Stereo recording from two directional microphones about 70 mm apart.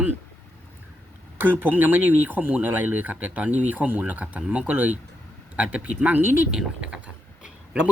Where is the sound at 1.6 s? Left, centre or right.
Right.